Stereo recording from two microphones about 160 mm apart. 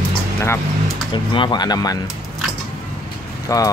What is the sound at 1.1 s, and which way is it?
Speech, 30° left (ahead or behind).